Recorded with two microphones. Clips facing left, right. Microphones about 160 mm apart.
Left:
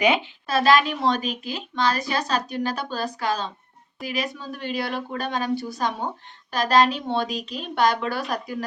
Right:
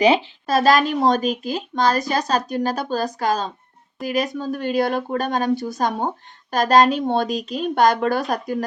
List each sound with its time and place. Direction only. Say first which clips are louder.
0.0 s a woman's voice: right 5 dB; 35° right (ahead or behind)